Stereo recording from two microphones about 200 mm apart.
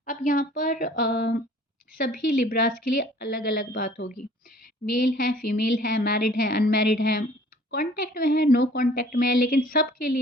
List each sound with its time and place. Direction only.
0.0 s a woman's voice: 40° left (ahead or behind)